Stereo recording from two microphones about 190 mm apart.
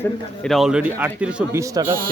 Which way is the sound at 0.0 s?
Centre (ahead or behind).